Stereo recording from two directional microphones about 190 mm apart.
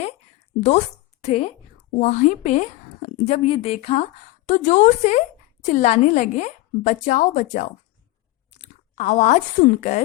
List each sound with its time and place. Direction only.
1.2 s a woman's voice: 35° left (ahead or behind)